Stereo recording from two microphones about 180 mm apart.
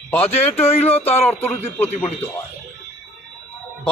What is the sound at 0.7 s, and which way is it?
Speech, 35° left (ahead or behind).